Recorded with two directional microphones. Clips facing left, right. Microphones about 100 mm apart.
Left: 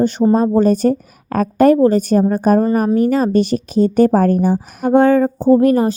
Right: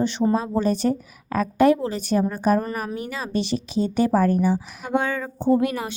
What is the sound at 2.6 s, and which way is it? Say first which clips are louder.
Speech: left 14 dB; 35° left (ahead or behind).